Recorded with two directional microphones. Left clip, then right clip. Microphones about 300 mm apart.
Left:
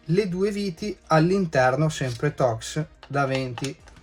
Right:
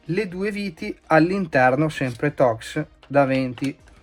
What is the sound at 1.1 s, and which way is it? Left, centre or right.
Speech, centre.